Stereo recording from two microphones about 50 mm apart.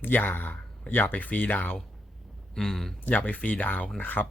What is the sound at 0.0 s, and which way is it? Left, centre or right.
Speech, left.